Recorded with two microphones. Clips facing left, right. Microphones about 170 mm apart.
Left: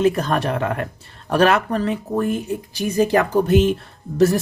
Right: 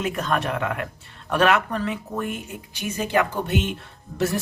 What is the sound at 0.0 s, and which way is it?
Speech, 35° left (ahead or behind).